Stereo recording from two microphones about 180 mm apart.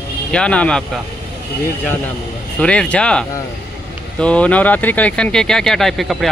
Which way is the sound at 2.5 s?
5° left (ahead or behind).